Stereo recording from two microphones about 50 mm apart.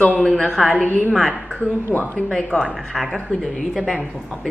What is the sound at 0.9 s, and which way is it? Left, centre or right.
Speech, left.